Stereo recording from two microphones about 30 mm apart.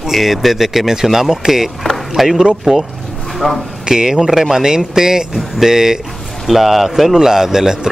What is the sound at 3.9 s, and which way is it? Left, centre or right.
Speech, centre.